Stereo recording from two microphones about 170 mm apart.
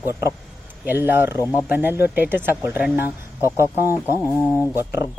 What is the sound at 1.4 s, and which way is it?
Speech, 15° left (ahead or behind).